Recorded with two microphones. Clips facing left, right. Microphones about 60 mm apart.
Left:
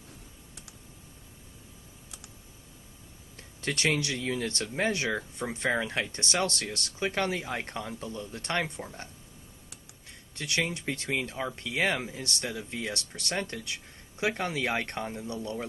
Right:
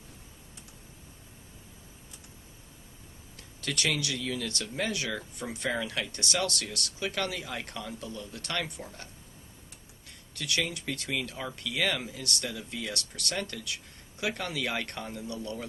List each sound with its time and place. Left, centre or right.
3.3 s speech: left
10.3 s speech: left